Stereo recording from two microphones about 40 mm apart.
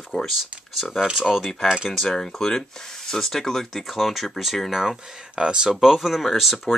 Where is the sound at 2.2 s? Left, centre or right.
Centre.